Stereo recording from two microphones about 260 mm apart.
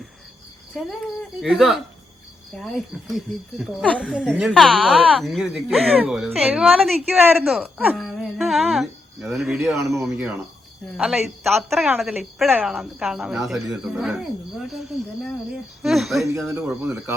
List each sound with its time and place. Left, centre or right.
0.8 s speech: centre